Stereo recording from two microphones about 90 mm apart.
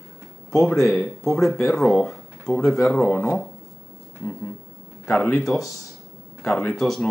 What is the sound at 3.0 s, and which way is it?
Speech, 25° left (ahead or behind).